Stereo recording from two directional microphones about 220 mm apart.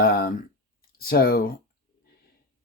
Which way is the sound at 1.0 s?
45° left (ahead or behind).